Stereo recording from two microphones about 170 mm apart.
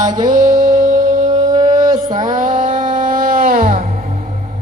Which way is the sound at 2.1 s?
50° right (ahead or behind).